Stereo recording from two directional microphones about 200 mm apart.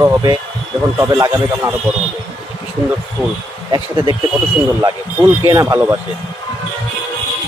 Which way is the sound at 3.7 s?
20° right (ahead or behind).